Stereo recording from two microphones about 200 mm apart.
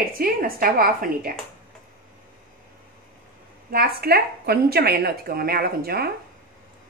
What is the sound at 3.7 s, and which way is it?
A woman's voice, 50° right (ahead or behind).